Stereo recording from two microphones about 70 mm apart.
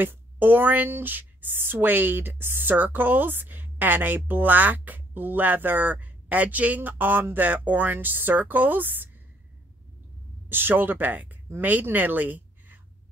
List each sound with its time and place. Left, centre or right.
0.0 s speech: right
10.5 s speech: right